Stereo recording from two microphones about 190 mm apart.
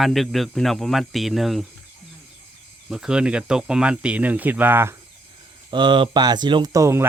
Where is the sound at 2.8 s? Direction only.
5° right (ahead or behind).